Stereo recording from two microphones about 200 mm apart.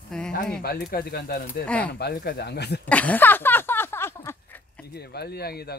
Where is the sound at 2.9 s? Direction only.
5° left (ahead or behind).